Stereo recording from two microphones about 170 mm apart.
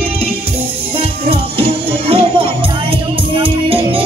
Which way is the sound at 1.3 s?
35° right (ahead or behind).